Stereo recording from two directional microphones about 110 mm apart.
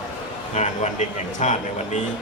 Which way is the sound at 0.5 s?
90° left.